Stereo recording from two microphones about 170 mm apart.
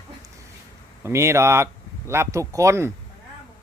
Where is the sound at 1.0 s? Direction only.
15° right (ahead or behind).